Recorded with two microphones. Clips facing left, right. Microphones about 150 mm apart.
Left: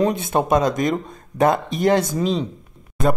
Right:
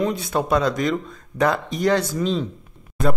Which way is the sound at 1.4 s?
25° left (ahead or behind).